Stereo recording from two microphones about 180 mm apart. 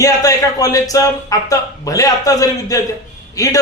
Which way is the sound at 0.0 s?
20° left (ahead or behind).